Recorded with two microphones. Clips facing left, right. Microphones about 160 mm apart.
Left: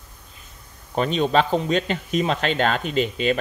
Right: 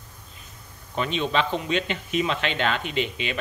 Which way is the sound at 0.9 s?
40° left (ahead or behind).